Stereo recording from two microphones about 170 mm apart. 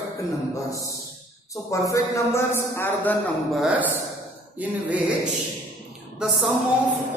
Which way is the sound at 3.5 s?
Centre (ahead or behind).